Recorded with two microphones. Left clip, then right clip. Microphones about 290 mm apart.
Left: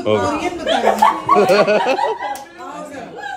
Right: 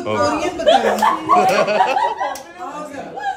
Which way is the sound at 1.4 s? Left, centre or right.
Left.